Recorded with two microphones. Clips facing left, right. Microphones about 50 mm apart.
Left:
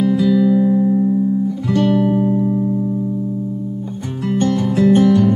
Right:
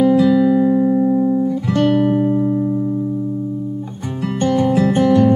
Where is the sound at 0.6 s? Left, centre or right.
Right.